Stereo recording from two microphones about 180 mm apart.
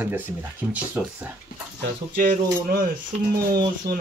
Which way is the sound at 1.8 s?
55° right (ahead or behind).